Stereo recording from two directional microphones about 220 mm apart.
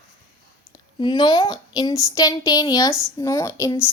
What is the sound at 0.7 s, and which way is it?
A woman's voice, 20° left (ahead or behind).